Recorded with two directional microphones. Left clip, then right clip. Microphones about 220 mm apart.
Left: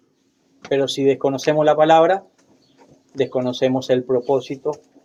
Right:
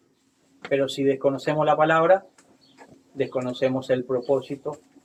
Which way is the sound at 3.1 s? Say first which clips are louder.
Left 6 dB; 45° left (ahead or behind).